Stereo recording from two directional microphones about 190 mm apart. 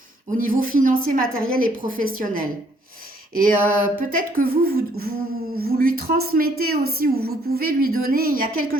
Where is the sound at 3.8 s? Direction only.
50° right (ahead or behind).